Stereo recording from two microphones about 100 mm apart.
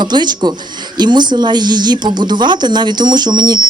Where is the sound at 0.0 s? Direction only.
45° right (ahead or behind).